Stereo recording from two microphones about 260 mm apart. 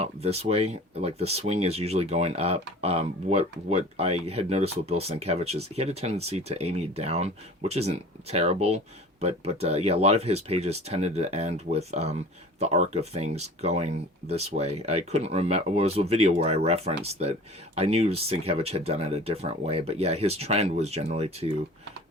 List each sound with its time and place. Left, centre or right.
0.0 s speech: right